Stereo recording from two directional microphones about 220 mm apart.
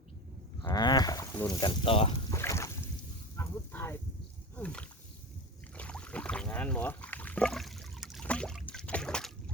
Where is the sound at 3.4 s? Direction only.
10° left (ahead or behind).